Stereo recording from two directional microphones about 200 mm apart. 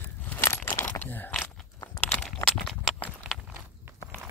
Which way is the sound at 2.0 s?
5° left (ahead or behind).